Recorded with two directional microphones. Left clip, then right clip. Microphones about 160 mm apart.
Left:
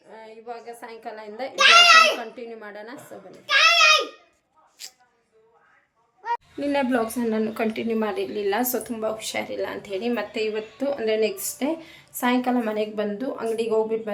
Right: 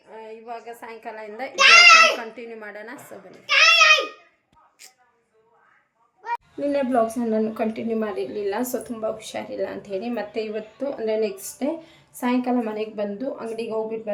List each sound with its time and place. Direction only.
0.2 s a woman's voice: 15° right (ahead or behind)
1.5 s a child's voice: 55° left (ahead or behind)
2.3 s a woman's voice: 10° right (ahead or behind)
3.4 s a sound: 55° left (ahead or behind)
4.8 s a sound: 5° right (ahead or behind)
6.6 s a woman's voice: 10° right (ahead or behind)